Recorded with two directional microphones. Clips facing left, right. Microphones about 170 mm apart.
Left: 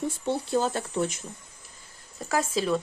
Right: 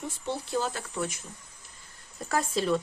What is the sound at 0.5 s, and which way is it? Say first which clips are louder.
Speech: left 5 dB; 30° left (ahead or behind).